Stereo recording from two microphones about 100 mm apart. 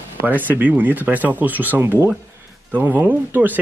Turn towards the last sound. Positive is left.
turn(degrees=-20)  # may be behind; listen again after turning